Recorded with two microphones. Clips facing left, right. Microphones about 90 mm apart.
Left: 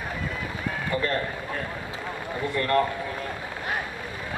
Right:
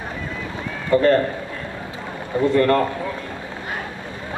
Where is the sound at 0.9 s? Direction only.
40° right (ahead or behind).